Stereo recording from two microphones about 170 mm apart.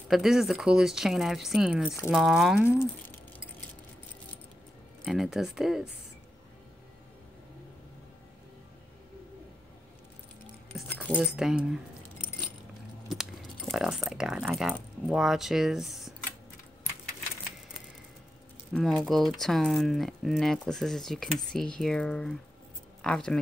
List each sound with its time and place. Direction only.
0.1 s speech: centre (ahead or behind)
5.0 s speech: centre (ahead or behind)
11.2 s speech: 5° right (ahead or behind)
13.1 s speech: centre (ahead or behind)
18.7 s speech: centre (ahead or behind)